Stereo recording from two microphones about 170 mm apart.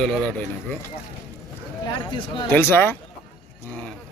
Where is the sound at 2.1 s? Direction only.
30° left (ahead or behind).